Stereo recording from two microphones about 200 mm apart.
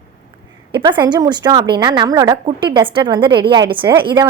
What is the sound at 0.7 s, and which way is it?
A woman's voice, 25° right (ahead or behind).